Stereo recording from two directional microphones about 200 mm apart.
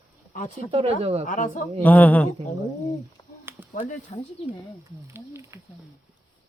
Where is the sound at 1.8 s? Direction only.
10° left (ahead or behind).